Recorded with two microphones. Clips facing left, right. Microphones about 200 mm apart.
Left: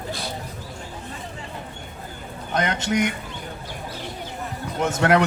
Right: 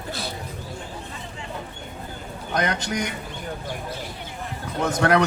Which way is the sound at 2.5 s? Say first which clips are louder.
Left 2 dB; 25° left (ahead or behind).